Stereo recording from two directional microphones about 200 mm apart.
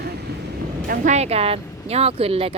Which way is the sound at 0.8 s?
45° right (ahead or behind).